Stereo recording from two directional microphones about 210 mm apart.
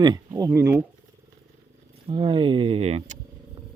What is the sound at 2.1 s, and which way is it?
Speech, 25° right (ahead or behind).